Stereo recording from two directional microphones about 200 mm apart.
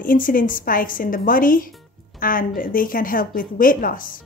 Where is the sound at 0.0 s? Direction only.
45° left (ahead or behind).